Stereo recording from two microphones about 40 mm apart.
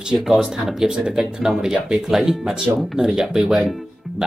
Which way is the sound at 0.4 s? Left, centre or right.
Centre.